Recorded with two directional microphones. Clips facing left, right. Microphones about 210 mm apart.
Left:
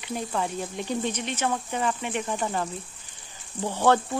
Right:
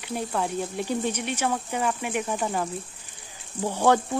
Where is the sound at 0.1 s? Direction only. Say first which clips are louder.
Right 1 dB; 5° right (ahead or behind).